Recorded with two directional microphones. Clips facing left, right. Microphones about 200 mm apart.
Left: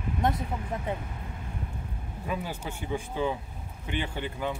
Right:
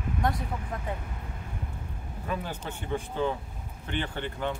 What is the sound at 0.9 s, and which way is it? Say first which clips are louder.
Speech: left 3 dB; 20° left (ahead or behind).